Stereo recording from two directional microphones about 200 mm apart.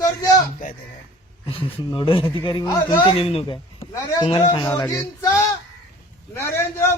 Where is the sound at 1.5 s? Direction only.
25° left (ahead or behind).